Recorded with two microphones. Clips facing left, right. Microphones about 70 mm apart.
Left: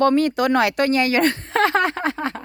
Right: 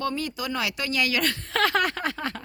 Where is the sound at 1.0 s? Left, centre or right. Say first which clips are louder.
Left 7 dB; left.